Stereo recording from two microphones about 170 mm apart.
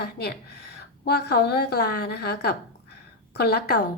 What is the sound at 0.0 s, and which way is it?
A woman's voice, 70° left (ahead or behind).